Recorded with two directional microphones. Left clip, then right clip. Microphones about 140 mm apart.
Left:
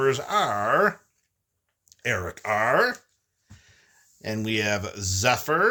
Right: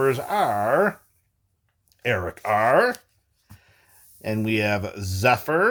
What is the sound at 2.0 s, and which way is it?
Speech, 50° right (ahead or behind).